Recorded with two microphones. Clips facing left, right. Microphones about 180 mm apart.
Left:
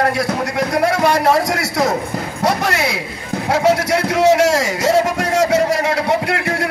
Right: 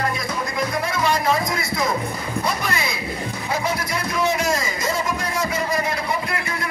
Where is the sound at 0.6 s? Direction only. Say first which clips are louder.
Left 8 dB; 70° left (ahead or behind).